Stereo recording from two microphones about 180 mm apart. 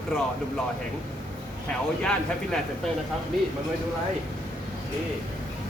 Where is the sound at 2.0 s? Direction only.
5° left (ahead or behind).